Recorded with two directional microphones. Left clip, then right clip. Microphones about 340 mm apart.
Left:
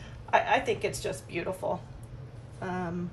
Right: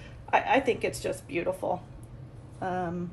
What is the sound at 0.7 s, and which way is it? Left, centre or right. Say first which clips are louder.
A woman's voice: right 2 dB; right.